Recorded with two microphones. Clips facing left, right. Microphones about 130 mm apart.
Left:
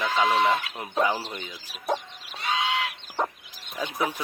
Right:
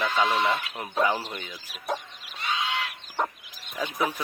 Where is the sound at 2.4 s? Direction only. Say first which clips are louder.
Left 2 dB; 90° left.